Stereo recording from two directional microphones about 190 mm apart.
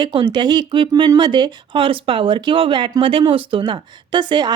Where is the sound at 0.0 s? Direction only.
25° right (ahead or behind).